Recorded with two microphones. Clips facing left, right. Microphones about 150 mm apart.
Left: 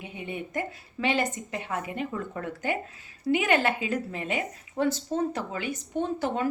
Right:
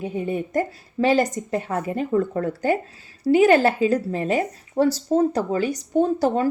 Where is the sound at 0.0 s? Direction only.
40° right (ahead or behind).